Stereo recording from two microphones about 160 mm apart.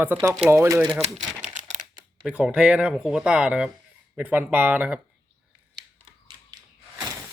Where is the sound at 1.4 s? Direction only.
50° right (ahead or behind).